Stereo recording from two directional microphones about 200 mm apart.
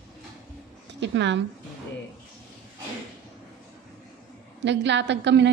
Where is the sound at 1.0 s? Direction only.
60° right (ahead or behind).